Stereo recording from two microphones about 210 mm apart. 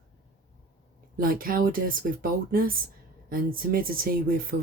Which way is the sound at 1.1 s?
45° right (ahead or behind).